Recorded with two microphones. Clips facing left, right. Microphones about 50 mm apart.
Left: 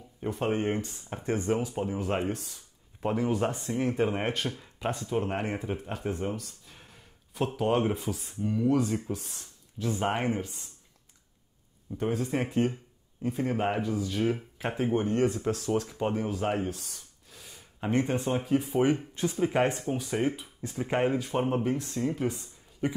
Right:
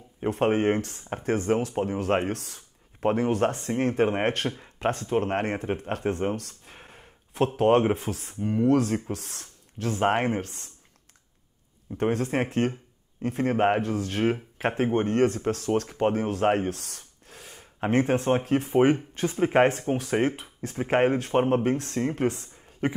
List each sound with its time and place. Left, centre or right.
0.2 s speech: right
1.0 s speech: right
3.0 s speech: right
6.3 s a sound: right
7.9 s speech: right
8.4 s speech: right
8.6 s speech: right
10.0 s speech: right
12.0 s speech: right
20.0 s speech: right
20.7 s speech: right
21.6 s speech: right